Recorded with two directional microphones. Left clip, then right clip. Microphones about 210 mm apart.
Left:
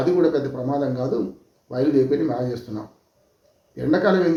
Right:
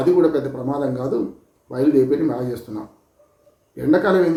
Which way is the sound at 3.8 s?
5° right (ahead or behind).